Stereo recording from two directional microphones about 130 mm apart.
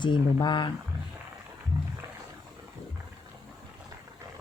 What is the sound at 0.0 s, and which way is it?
Speech, 35° left (ahead or behind).